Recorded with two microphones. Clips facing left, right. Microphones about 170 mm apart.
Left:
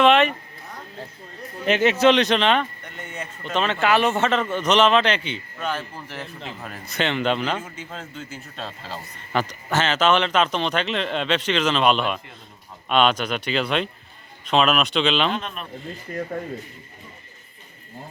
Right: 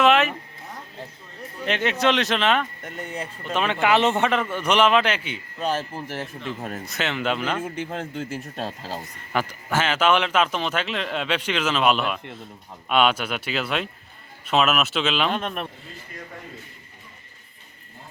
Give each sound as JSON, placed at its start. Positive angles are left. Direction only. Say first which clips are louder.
{"t": 0.0, "sound": "a sound", "louder": "left 2 dB", "side_deg": -5}
{"t": 1.6, "sound": "speech", "louder": "left 5 dB", "side_deg": 5}
{"t": 2.8, "sound": "speech", "louder": "right 3 dB", "side_deg": -40}
{"t": 3.5, "sound": "speech", "louder": "even", "side_deg": -10}
{"t": 5.5, "sound": "speech", "louder": "right 4 dB", "side_deg": -40}
{"t": 6.8, "sound": "speech", "louder": "left 4 dB", "side_deg": 0}
{"t": 7.6, "sound": "speech", "louder": "right 7 dB", "side_deg": -55}
{"t": 9.3, "sound": "speech", "louder": "left 1 dB", "side_deg": -10}
{"t": 15.3, "sound": "speech", "louder": "right 2 dB", "side_deg": -55}
{"t": 16.1, "sound": "speech", "louder": "left 13 dB", "side_deg": 45}